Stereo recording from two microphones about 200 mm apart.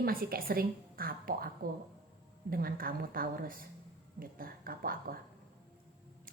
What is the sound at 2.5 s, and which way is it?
A woman's voice, 45° right (ahead or behind).